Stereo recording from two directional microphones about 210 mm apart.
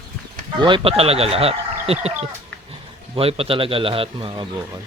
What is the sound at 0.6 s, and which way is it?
Speech, 25° right (ahead or behind).